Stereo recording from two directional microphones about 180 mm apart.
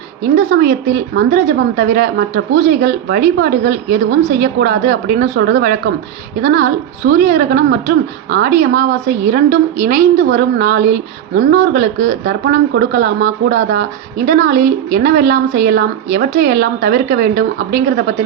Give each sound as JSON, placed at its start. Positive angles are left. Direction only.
{"t": 0.2, "sound": "a woman's voice", "side_deg": -55}